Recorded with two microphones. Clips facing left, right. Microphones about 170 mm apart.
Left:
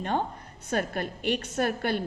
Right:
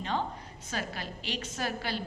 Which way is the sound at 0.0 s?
55° left (ahead or behind).